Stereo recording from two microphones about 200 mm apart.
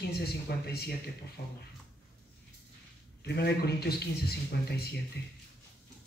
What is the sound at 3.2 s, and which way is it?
A man's voice, 55° left (ahead or behind).